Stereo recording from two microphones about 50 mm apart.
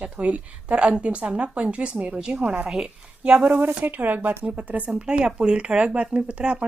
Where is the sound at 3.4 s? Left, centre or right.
Right.